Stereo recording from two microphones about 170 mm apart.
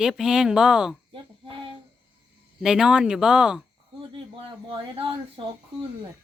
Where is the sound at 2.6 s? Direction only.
5° right (ahead or behind).